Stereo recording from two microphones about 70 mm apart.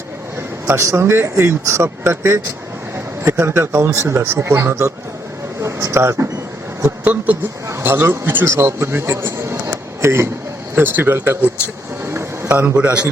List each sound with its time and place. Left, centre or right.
0.8 s speech: right
7.0 s speech: right
7.9 s a man's voice: right
12.0 s a sound: right
12.5 s a man's voice: right